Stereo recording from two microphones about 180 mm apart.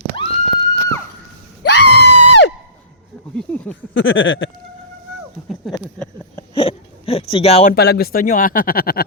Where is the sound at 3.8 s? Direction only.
90° left.